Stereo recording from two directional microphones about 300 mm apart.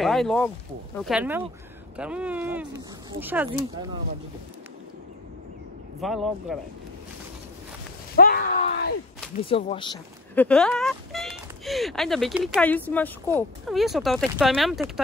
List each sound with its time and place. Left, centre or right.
0.0 s speech: centre
5.9 s speech: centre
8.2 s groan: left
9.5 s speech: centre
10.3 s speech: centre